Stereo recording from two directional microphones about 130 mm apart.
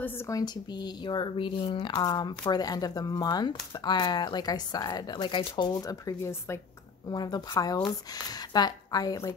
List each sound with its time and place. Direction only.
0.0 s speech: 20° left (ahead or behind)
7.1 s speech: 30° left (ahead or behind)